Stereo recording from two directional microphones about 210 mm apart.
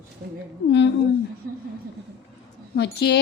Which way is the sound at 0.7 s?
55° left (ahead or behind).